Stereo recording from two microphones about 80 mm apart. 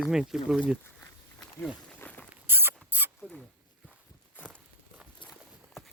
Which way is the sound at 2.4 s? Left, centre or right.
Right.